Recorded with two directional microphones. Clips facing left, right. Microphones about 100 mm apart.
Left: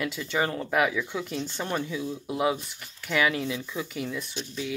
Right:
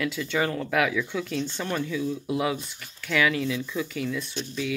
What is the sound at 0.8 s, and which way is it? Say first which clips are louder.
Speech: even; 10° left (ahead or behind).